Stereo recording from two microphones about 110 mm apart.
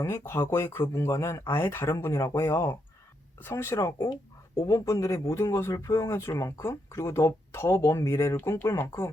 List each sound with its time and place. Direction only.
0.0 s speech: 25° left (ahead or behind)